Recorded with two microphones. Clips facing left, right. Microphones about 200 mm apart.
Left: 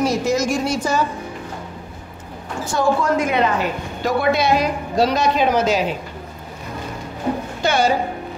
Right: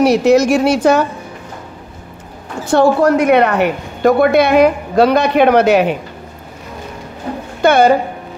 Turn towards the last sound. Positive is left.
turn(degrees=-55)  # may be behind; listen again after turning